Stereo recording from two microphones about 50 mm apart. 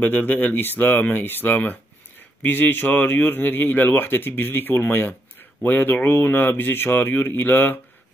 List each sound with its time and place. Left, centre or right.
0.0 s speech: left